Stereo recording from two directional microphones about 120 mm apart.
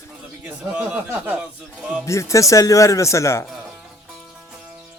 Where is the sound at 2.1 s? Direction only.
25° left (ahead or behind).